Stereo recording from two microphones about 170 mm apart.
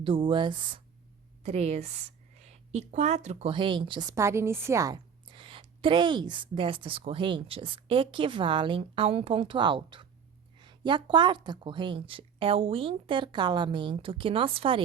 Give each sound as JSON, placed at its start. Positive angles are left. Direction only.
{"t": 0.0, "sound": "a woman's voice", "side_deg": -30}
{"t": 1.5, "sound": "a woman's voice", "side_deg": -40}
{"t": 3.5, "sound": "a woman's voice", "side_deg": -30}
{"t": 4.1, "sound": "a woman's voice", "side_deg": -15}